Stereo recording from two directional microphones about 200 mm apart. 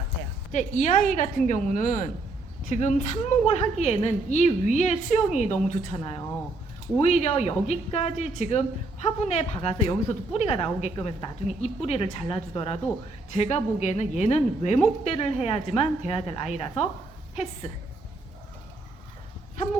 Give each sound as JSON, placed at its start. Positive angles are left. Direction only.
{"t": 0.5, "sound": "a woman's voice", "side_deg": 40}
{"t": 6.0, "sound": "a woman's voice", "side_deg": 25}